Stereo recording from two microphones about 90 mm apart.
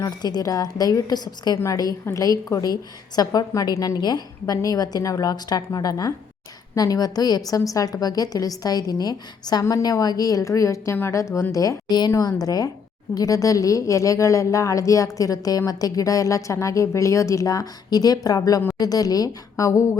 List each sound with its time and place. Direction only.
0.0 s a woman's voice: 45° left (ahead or behind)
1.5 s a woman's voice: 35° left (ahead or behind)